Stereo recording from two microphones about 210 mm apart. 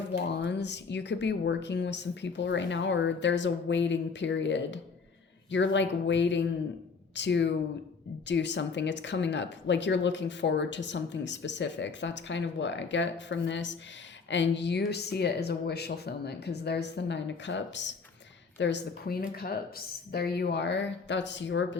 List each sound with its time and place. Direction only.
0.1 s speech: 55° left (ahead or behind)